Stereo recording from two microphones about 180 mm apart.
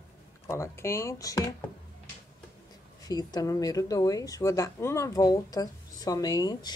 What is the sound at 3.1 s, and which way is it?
Speech, 20° left (ahead or behind).